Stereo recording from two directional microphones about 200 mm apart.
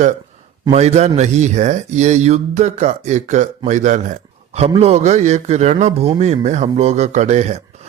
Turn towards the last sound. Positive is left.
turn(degrees=-35)  # may be behind; listen again after turning